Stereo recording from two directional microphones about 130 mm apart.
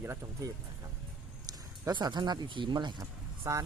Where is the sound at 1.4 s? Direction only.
30° right (ahead or behind).